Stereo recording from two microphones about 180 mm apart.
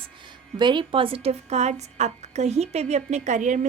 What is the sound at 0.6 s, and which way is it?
Speech, 25° right (ahead or behind).